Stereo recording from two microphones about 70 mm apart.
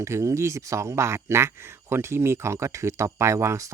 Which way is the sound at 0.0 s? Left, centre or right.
Right.